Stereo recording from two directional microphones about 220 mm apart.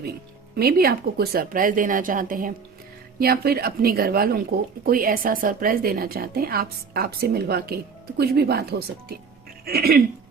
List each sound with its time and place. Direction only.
0.5 s a woman's voice: 45° right (ahead or behind)